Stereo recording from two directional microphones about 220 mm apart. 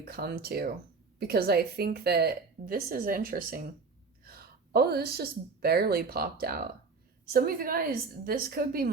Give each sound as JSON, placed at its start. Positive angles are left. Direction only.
{"t": 0.1, "sound": "a woman's voice", "side_deg": -45}